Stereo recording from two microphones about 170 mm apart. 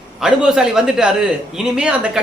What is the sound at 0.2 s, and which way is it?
A man's voice, 5° right (ahead or behind).